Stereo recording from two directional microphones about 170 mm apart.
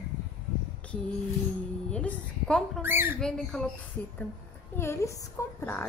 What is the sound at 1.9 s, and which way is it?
Speech, 5° left (ahead or behind).